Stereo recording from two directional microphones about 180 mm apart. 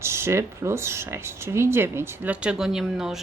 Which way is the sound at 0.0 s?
15° right (ahead or behind).